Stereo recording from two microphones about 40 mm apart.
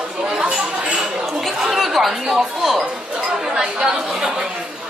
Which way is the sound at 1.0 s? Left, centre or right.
Centre.